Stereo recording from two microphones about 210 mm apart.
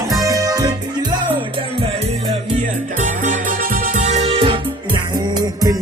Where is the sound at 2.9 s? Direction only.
40° right (ahead or behind); by 5.8 s 15° right (ahead or behind).